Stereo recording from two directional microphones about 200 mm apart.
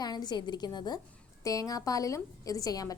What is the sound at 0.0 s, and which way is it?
A woman's voice, 20° left (ahead or behind).